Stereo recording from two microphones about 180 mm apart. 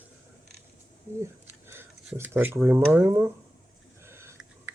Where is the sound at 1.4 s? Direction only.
10° right (ahead or behind).